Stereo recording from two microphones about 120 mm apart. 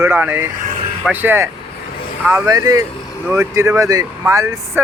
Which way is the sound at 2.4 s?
30° right (ahead or behind).